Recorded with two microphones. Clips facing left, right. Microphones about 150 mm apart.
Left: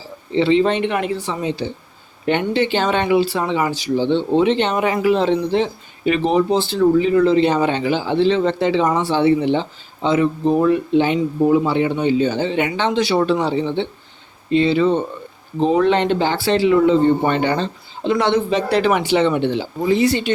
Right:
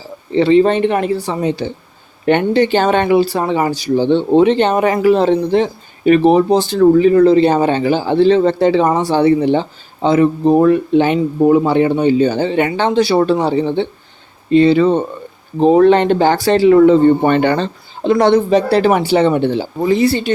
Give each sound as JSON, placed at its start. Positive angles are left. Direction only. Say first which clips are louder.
{"t": 0.3, "sound": "speech", "louder": "right 5 dB", "side_deg": -45}